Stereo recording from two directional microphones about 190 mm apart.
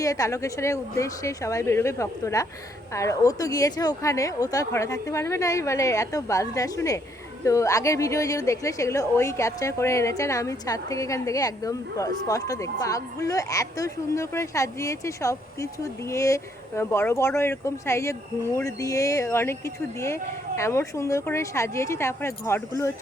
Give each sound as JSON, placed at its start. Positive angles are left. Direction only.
{"t": 0.0, "sound": "speech", "side_deg": 15}